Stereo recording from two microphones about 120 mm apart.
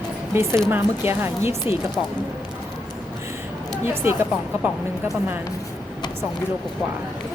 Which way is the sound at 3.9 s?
20° right (ahead or behind).